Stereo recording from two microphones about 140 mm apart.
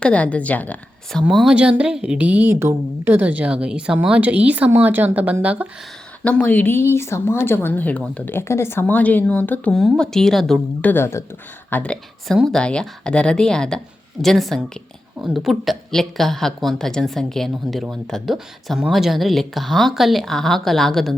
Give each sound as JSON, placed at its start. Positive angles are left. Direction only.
{"t": 0.0, "sound": "speech", "side_deg": 10}
{"t": 1.2, "sound": "speech", "side_deg": 0}
{"t": 6.2, "sound": "speech", "side_deg": 10}
{"t": 9.7, "sound": "speech", "side_deg": 5}